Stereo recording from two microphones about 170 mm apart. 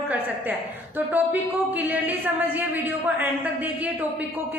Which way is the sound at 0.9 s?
10° right (ahead or behind).